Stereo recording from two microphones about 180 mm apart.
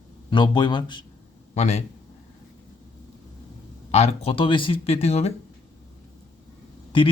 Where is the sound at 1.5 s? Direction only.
35° left (ahead or behind).